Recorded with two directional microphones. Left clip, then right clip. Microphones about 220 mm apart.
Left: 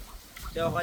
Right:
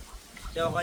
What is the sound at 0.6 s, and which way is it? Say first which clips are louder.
Speech: even; 15° right (ahead or behind).